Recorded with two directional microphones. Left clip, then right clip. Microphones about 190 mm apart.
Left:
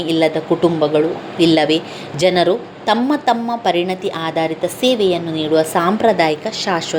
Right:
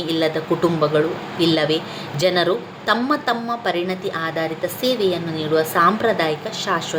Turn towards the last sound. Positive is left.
turn(degrees=20)  # may be behind; listen again after turning